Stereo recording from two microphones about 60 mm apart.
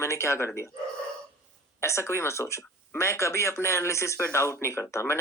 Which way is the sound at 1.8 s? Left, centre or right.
Left.